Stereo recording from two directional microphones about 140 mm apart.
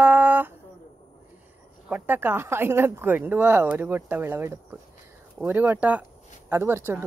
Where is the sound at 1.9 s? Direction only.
15° right (ahead or behind).